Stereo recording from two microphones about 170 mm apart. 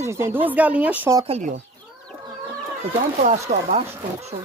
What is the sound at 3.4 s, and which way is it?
Speech, 40° right (ahead or behind).